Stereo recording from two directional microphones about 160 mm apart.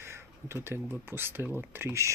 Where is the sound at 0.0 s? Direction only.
15° right (ahead or behind).